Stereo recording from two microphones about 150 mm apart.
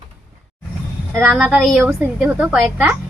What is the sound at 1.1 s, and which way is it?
A woman's voice, centre (ahead or behind).